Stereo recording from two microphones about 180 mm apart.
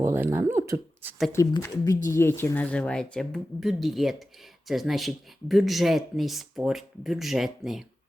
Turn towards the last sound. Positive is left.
turn(degrees=0)  # may be behind; listen again after turning